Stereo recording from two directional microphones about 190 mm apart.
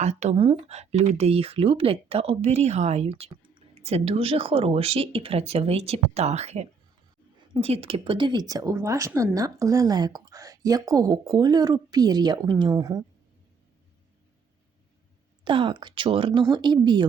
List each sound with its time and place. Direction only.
0.0 s speech: 35° right (ahead or behind); by 13.1 s 20° right (ahead or behind)
15.4 s speech: 25° right (ahead or behind)